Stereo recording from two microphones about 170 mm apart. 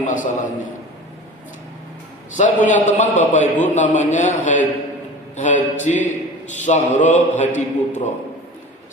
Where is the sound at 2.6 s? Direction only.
45° left (ahead or behind).